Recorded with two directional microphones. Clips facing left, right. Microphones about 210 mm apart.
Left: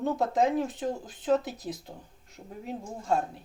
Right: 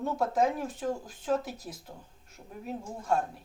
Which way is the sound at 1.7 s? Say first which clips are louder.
Left 7 dB; 25° left (ahead or behind).